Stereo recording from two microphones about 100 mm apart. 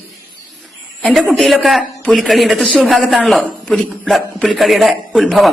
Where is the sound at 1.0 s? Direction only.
Centre (ahead or behind).